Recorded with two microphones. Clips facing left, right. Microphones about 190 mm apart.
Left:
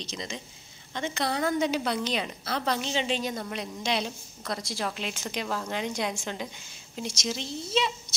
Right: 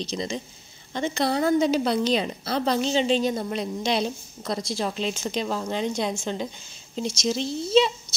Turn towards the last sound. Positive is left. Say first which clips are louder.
# right 8 dB
turn(degrees=-30)  # may be behind; listen again after turning